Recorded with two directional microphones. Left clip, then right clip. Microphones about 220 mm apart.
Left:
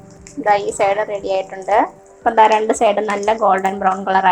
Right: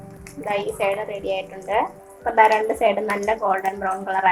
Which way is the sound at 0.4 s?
35° left (ahead or behind).